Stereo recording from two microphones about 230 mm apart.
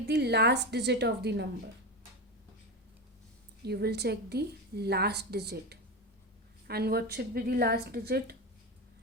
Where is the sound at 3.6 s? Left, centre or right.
Right.